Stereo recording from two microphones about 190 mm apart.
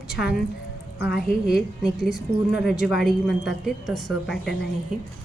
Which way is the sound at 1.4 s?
5° right (ahead or behind).